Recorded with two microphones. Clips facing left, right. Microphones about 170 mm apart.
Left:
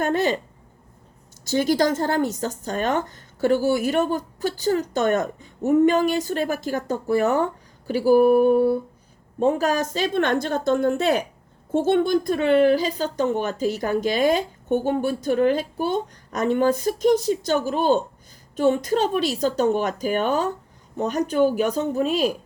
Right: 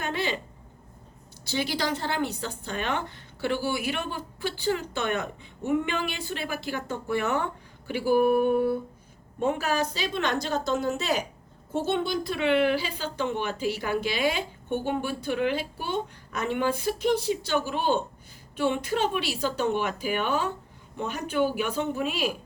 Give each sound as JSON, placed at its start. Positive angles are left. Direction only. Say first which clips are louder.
{"t": 0.0, "sound": "speech", "louder": "left 8 dB", "side_deg": 45}
{"t": 1.5, "sound": "speech", "louder": "left 9 dB", "side_deg": 45}